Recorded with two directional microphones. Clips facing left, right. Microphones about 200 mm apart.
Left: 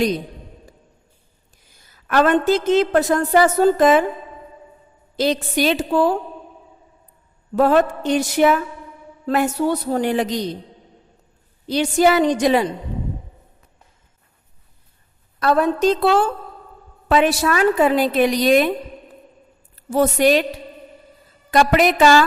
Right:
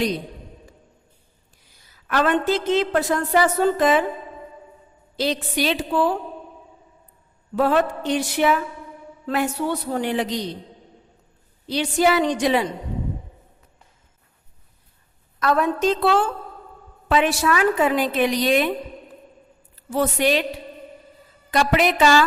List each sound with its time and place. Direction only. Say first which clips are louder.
1.9 s a woman's voice: left 4 dB; 50° left (ahead or behind)
5.1 s a woman's voice: left 4 dB; 45° left (ahead or behind)
7.5 s a woman's voice: left 4 dB; 45° left (ahead or behind)
11.7 s a woman's voice: left 3 dB; 45° left (ahead or behind)
15.4 s a woman's voice: left 3 dB; 35° left (ahead or behind)
19.9 s a woman's voice: left 5 dB; 45° left (ahead or behind)
21.5 s a woman's voice: left 4 dB; 45° left (ahead or behind)